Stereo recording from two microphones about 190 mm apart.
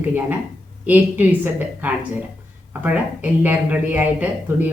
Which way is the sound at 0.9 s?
10° right (ahead or behind).